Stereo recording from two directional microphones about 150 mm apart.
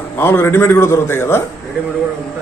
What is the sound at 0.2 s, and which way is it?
A man's voice, 15° left (ahead or behind).